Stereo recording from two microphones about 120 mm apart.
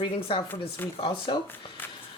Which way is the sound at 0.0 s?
45° left (ahead or behind).